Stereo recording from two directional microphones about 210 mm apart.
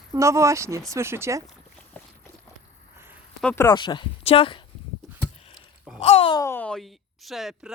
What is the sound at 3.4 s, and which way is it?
Speech, 10° left (ahead or behind).